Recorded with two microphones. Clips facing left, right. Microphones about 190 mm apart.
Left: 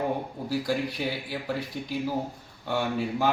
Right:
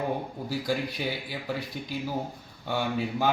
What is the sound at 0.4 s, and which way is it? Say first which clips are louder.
Speech: left 2 dB; centre (ahead or behind).